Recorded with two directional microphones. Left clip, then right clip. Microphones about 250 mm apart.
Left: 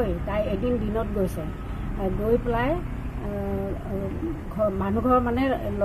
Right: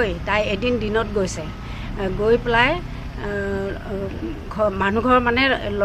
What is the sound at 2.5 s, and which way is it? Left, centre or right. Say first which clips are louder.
Speech: right 8 dB; right.